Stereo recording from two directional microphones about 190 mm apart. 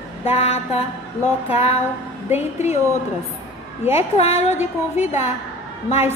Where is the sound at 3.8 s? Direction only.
35° left (ahead or behind).